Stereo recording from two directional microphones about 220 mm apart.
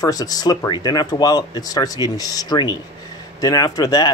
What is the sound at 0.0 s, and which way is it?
A man's voice, 15° left (ahead or behind).